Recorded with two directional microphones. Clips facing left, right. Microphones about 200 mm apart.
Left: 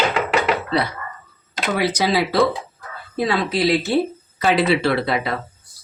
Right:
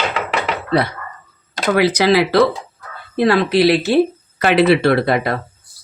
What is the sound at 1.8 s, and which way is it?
Speech, 85° right.